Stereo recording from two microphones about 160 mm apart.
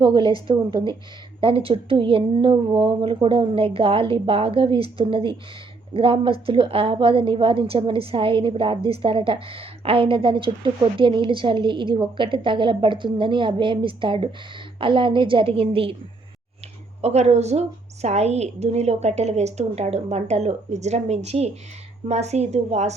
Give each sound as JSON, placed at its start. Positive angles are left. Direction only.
{"t": 0.0, "sound": "a woman's voice", "side_deg": -30}
{"t": 17.0, "sound": "a woman's voice", "side_deg": -40}